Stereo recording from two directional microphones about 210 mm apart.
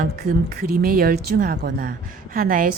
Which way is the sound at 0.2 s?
45° right (ahead or behind).